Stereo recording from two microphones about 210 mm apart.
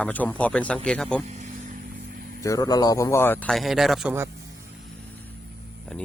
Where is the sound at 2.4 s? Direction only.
15° left (ahead or behind); by 4.1 s centre (ahead or behind).